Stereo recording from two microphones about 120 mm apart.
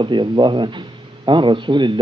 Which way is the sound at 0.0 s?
40° right (ahead or behind).